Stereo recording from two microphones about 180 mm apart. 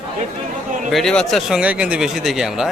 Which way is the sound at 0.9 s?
5° left (ahead or behind).